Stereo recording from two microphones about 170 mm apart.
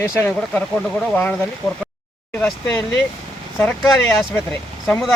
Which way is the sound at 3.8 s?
20° left (ahead or behind).